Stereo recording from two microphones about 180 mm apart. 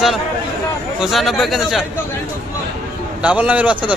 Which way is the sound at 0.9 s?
Centre (ahead or behind).